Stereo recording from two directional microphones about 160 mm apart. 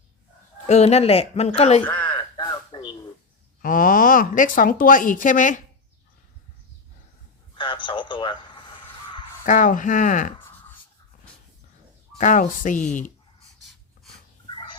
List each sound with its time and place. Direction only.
0.7 s speech: 40° left (ahead or behind)
2.0 s a sound: 30° left (ahead or behind)
3.6 s speech: 60° left (ahead or behind)
7.5 s speech: 30° left (ahead or behind)
9.4 s speech: 55° left (ahead or behind)
12.1 s speech: 50° left (ahead or behind)